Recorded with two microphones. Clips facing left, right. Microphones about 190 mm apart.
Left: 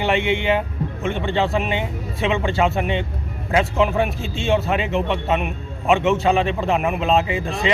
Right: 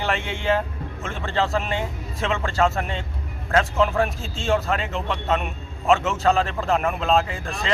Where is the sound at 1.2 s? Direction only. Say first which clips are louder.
Left 1 dB; 15° left (ahead or behind).